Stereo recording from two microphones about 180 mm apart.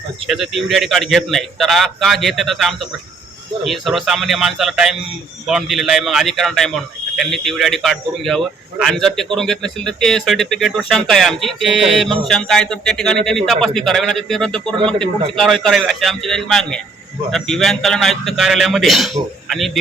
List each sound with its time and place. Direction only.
0.3 s speech: centre (ahead or behind)